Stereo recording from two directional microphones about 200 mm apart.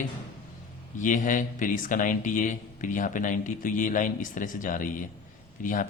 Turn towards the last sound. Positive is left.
turn(degrees=40)  # may be behind; listen again after turning